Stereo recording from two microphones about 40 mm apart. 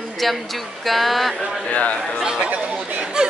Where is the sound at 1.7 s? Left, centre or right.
Left.